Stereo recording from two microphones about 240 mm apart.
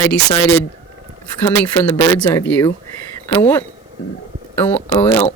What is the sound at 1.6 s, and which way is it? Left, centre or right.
Speech, centre.